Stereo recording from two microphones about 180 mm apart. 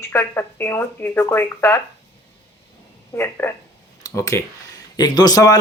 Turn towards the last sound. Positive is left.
turn(degrees=20)  # may be behind; listen again after turning